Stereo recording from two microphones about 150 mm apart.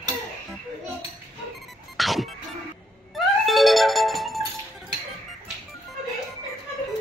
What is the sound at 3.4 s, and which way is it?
Music, centre (ahead or behind).